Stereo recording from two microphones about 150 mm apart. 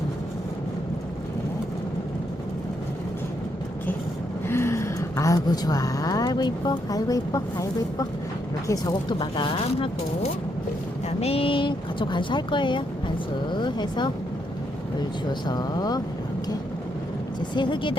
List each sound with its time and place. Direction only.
4.4 s a woman's voice: 15° left (ahead or behind); by 9.9 s 35° left (ahead or behind)
11.2 s speech: 40° left (ahead or behind)
15.3 s speech: 30° left (ahead or behind)
17.5 s speech: 30° left (ahead or behind)